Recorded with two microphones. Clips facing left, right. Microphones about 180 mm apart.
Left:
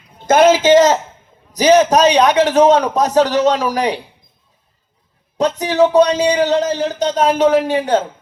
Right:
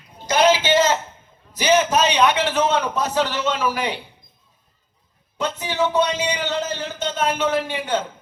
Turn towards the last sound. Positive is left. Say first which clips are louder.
# left 8 dB
turn(degrees=40)  # may be behind; listen again after turning